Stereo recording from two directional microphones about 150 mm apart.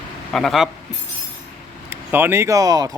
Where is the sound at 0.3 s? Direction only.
Centre (ahead or behind).